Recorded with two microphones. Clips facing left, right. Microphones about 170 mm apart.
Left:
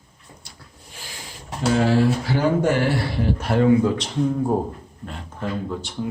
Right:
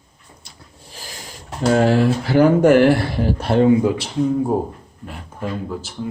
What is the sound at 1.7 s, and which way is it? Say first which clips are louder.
Speech: right 2 dB; 55° right (ahead or behind).